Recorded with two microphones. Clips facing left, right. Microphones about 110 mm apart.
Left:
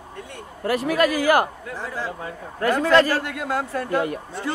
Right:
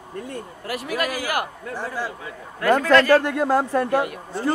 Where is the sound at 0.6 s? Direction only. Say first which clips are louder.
Left 7 dB; 35° left (ahead or behind).